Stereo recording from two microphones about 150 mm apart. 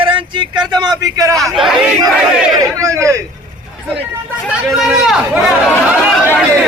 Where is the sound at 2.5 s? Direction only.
25° right (ahead or behind).